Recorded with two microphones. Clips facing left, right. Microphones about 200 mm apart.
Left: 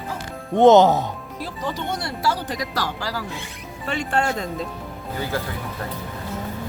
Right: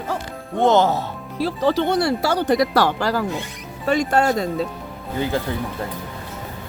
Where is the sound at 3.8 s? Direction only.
40° right (ahead or behind).